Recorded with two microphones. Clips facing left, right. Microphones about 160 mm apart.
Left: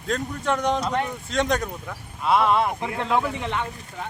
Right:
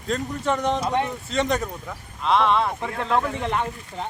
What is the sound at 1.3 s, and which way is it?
A man's voice, centre (ahead or behind).